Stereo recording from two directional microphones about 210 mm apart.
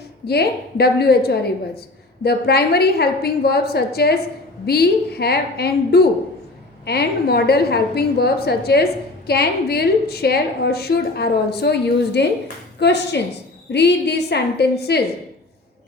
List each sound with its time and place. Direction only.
0.3 s a woman's voice: 50° left (ahead or behind)